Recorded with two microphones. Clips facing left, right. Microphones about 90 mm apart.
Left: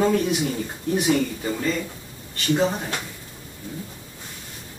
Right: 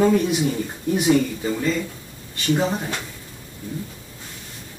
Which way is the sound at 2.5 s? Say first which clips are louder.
Left 1 dB; 10° right (ahead or behind).